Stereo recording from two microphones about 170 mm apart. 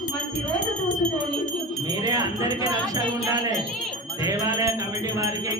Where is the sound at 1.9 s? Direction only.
25° right (ahead or behind).